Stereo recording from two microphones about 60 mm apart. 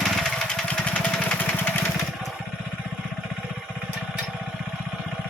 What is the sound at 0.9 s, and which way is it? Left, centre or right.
Vehicle, centre.